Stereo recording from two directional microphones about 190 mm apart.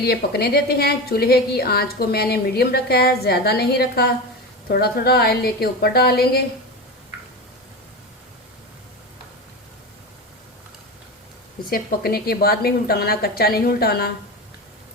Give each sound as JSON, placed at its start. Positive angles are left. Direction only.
{"t": 0.0, "sound": "a woman's voice", "side_deg": 55}
{"t": 11.7, "sound": "a woman's voice", "side_deg": 55}